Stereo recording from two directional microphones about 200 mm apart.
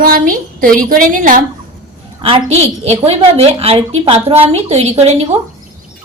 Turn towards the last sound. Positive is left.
turn(degrees=-30)  # may be behind; listen again after turning